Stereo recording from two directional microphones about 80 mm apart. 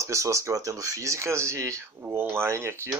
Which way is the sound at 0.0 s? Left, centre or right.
Right.